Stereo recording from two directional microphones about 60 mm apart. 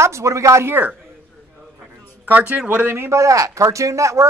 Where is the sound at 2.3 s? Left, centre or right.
Right.